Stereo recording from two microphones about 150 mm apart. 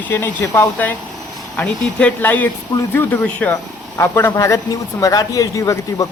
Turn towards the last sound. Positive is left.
turn(degrees=20)  # may be behind; listen again after turning